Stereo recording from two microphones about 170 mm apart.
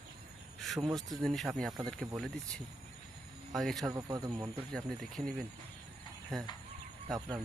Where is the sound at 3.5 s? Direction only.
Centre (ahead or behind).